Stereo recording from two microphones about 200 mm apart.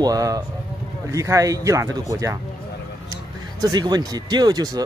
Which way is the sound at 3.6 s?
20° right (ahead or behind).